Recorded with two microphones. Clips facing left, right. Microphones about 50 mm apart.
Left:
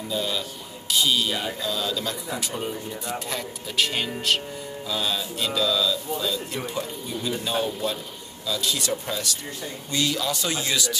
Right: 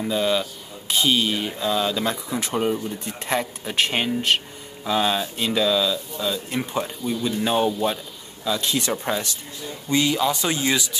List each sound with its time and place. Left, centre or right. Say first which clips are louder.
0.1 s speech: right 5 dB; right